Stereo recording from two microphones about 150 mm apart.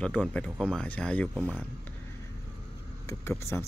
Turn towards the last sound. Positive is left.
turn(degrees=15)  # may be behind; listen again after turning